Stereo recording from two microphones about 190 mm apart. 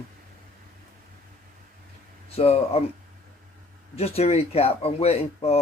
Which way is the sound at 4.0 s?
30° left (ahead or behind).